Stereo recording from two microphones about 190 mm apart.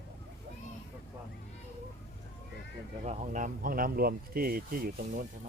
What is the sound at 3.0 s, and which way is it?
Speech, 40° right (ahead or behind).